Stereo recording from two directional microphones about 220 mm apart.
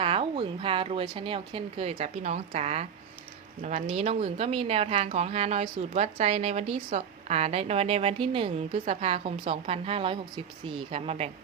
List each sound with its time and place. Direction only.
0.0 s a woman's voice: 25° right (ahead or behind)